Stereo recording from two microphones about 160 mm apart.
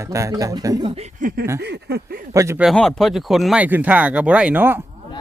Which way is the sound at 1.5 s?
90° right.